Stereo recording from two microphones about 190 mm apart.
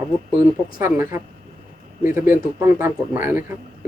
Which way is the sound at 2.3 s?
15° right (ahead or behind).